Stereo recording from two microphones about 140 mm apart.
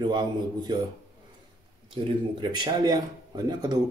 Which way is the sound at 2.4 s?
30° right (ahead or behind).